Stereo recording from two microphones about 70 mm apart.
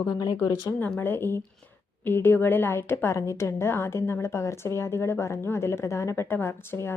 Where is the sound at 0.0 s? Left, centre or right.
Left.